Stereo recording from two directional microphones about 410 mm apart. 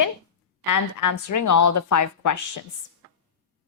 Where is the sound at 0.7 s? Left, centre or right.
Left.